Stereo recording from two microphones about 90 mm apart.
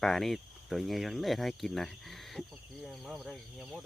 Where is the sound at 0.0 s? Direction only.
5° left (ahead or behind).